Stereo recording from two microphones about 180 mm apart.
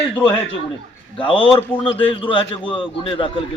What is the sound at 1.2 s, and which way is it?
A man's voice, 30° left (ahead or behind).